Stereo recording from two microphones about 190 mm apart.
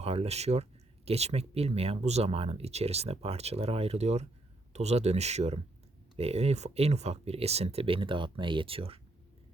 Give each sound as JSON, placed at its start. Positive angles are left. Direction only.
{"t": 0.0, "sound": "speech", "side_deg": -30}